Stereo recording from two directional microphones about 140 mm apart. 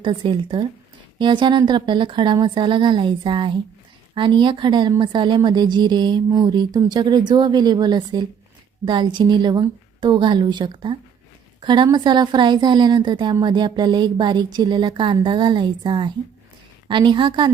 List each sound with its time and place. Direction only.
0.0 s speech: 35° right (ahead or behind)